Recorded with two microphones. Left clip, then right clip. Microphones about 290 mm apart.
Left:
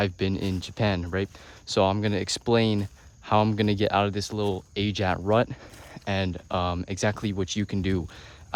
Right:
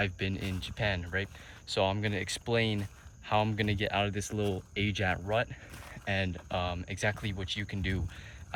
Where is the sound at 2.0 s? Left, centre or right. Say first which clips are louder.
Left 6 dB; left.